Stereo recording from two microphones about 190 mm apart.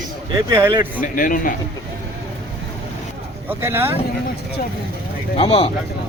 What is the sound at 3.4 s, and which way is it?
Speech, 10° right (ahead or behind).